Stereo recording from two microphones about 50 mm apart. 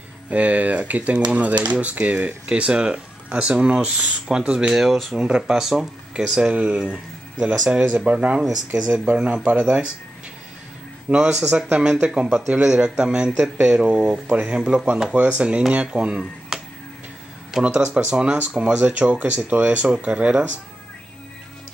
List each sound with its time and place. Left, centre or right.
0.3 s speech: right
4.7 s speech: centre
5.1 s speech: centre
6.8 s speech: centre; by 8.4 s right
8.4 s speech: centre
8.9 s speech: right
11.1 s speech: centre
13.4 s speech: centre
13.7 s speech: centre
15.1 s speech: right
16.2 s a sound: centre
17.7 s speech: right